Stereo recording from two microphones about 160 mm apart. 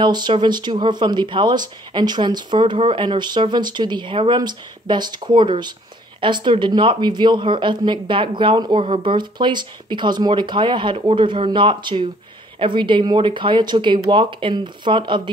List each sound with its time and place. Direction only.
0.0 s speech: 30° right (ahead or behind)